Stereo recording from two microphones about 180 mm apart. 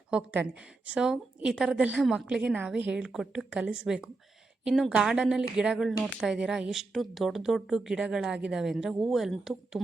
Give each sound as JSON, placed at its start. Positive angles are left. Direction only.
{"t": 0.1, "sound": "speech", "side_deg": -10}